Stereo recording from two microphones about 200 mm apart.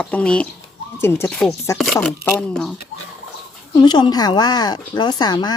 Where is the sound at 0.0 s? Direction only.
5° left (ahead or behind).